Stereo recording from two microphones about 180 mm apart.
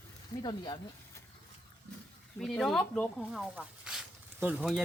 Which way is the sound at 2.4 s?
Centre (ahead or behind).